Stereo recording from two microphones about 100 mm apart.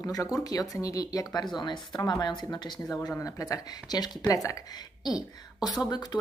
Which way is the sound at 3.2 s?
35° left (ahead or behind).